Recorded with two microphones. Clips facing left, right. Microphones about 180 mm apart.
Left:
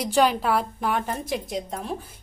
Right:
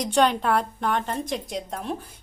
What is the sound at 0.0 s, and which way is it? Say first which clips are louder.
A woman's voice: even; 5° left (ahead or behind).